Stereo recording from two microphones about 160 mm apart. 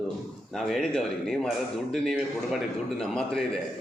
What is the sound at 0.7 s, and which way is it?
A man's voice, 5° left (ahead or behind).